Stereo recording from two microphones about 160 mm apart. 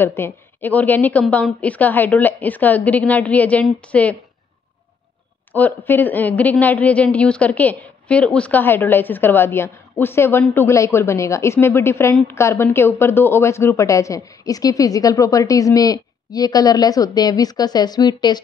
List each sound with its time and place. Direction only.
0.0 s speech: 15° left (ahead or behind)
5.5 s speech: 10° left (ahead or behind); by 18.4 s 25° left (ahead or behind)